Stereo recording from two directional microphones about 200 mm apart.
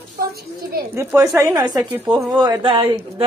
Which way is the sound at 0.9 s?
15° right (ahead or behind).